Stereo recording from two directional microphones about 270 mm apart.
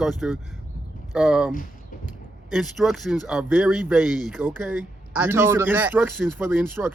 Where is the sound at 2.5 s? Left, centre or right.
Centre.